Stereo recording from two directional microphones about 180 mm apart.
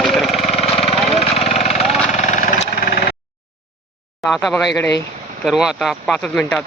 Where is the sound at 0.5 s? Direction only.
35° left (ahead or behind).